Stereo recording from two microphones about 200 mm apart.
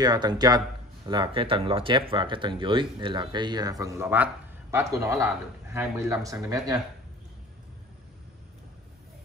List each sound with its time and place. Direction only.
0.0 s speech: 20° right (ahead or behind)